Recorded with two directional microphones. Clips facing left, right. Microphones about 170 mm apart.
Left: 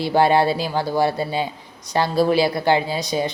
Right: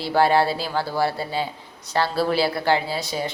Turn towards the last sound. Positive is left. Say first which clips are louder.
# left 4 dB
turn(degrees=15)  # may be behind; listen again after turning